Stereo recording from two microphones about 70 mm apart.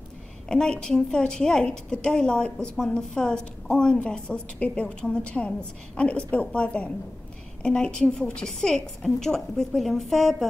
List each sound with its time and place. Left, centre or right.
0.5 s a woman's voice: centre